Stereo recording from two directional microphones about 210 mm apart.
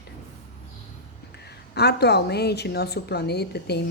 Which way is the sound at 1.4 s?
50° left (ahead or behind).